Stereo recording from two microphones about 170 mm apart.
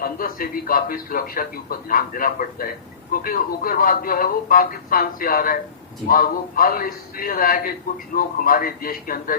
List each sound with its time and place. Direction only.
0.0 s a man's voice: 60° left (ahead or behind)